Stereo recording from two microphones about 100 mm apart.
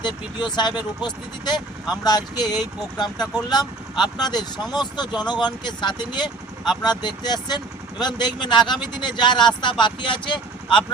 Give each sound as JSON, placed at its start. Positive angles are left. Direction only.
{"t": 0.0, "sound": "speech", "side_deg": 50}